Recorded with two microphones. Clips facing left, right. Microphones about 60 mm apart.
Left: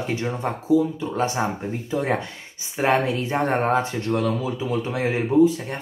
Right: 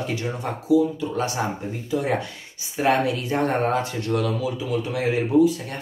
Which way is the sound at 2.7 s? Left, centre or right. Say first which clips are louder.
Even; left.